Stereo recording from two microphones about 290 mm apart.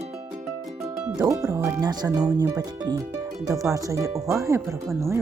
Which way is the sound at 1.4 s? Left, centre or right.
Centre.